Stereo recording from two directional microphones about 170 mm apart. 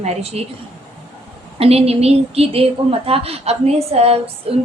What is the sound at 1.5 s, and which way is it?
A woman's voice, 35° right (ahead or behind).